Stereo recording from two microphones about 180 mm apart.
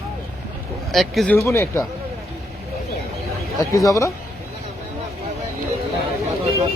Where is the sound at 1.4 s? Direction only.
15° left (ahead or behind).